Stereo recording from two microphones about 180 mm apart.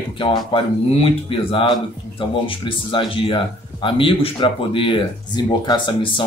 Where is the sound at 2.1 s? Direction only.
30° left (ahead or behind).